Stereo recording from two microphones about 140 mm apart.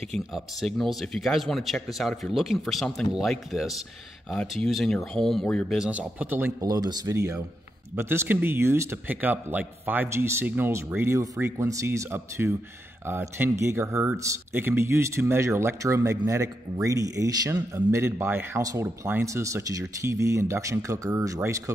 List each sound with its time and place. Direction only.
0.1 s speech: centre (ahead or behind)
5.9 s speech: 10° right (ahead or behind)
6.6 s speech: 25° right (ahead or behind)